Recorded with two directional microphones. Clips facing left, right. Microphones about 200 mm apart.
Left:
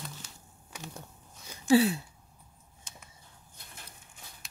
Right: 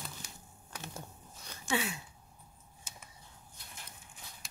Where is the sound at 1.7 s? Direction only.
35° left (ahead or behind).